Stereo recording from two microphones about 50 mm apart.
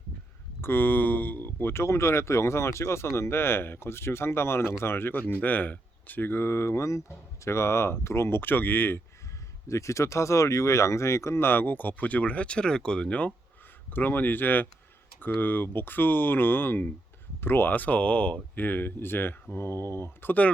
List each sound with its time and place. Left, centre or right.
0.6 s speech: left
1.7 s speech: left
5.4 s speech: left
7.4 s speech: left
8.4 s speech: left
9.6 s speech: left
11.4 s speech: left
13.9 s speech: left
17.7 s speech: left
18.5 s speech: left